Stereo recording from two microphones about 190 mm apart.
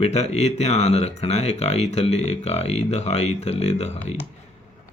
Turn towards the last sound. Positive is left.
turn(degrees=35)  # may be behind; listen again after turning